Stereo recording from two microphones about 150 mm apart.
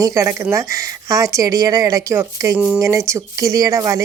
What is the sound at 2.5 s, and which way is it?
Speech, 10° right (ahead or behind).